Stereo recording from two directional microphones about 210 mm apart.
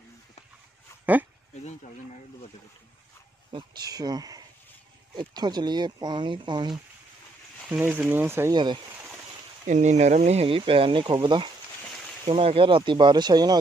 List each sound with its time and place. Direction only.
3.5 s speech: 20° right (ahead or behind)
7.6 s speech: 5° right (ahead or behind)
9.7 s speech: 35° right (ahead or behind); by 13.6 s 20° right (ahead or behind)